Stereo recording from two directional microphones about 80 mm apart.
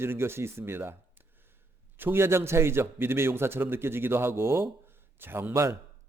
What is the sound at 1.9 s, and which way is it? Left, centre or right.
A man's voice, right.